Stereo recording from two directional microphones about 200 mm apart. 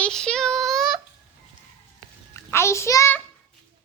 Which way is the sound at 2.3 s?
15° left (ahead or behind).